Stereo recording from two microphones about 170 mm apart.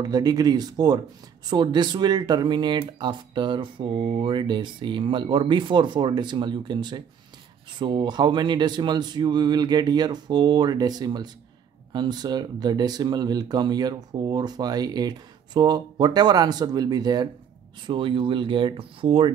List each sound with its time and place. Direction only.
0.0 s speech: 25° right (ahead or behind)